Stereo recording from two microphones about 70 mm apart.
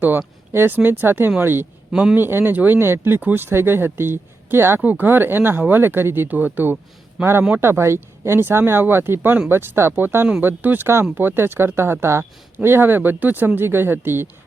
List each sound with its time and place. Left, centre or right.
0.0 s speech: right
1.9 s a man's voice: centre
2.1 s speech: right
4.8 s speech: right